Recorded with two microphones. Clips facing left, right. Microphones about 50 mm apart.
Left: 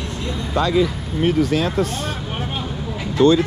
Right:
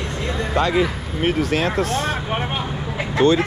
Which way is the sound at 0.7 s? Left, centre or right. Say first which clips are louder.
Left 1 dB; right.